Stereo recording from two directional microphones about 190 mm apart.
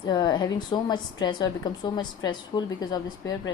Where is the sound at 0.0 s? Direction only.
25° left (ahead or behind).